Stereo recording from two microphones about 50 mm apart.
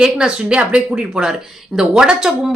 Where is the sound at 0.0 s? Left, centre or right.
Centre.